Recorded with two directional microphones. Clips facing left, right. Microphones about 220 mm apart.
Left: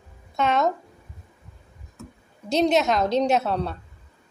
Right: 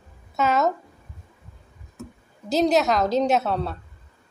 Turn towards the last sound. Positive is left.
turn(degrees=0)  # may be behind; listen again after turning